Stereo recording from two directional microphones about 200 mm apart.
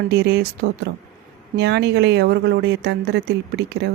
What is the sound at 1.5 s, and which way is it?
Speech, 55° right (ahead or behind).